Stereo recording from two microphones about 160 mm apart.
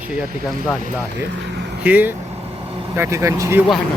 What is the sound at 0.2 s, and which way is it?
Speech, centre (ahead or behind).